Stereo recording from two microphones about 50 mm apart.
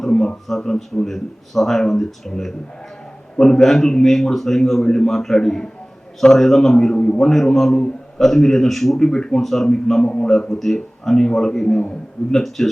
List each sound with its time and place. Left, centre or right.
0.0 s a sound: centre
0.4 s a man's voice: centre
6.9 s a man's voice: centre
7.2 s a man's voice: centre